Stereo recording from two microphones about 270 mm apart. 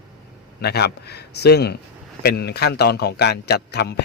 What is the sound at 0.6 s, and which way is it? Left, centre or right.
A man's voice, left.